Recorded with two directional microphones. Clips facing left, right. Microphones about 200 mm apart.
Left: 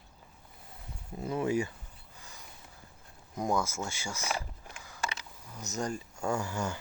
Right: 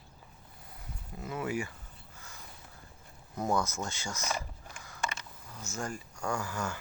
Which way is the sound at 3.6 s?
10° left (ahead or behind).